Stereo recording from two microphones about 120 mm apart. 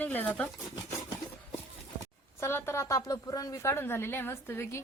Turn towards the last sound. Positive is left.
turn(degrees=20)  # may be behind; listen again after turning